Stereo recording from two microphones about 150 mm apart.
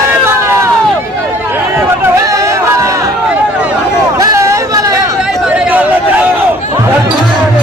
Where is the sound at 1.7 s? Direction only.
20° right (ahead or behind).